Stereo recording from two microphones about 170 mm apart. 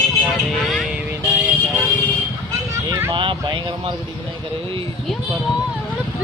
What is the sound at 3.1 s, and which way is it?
Speech, 30° right (ahead or behind).